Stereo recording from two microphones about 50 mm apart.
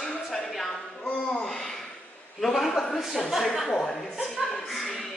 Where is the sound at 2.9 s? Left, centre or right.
Centre.